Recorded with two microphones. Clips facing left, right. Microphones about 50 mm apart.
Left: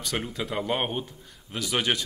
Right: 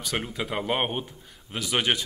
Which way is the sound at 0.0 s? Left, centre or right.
Centre.